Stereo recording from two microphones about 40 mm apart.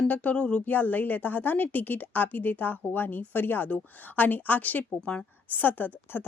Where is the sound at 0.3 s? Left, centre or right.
Left.